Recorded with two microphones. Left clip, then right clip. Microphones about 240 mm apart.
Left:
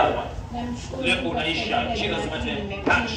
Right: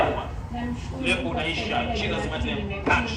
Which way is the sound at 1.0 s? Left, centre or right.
Left.